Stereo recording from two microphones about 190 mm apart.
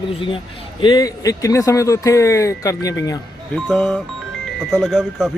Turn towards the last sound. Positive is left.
turn(degrees=0)  # may be behind; listen again after turning